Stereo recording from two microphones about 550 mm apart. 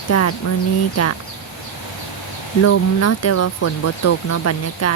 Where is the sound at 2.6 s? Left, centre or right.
Left.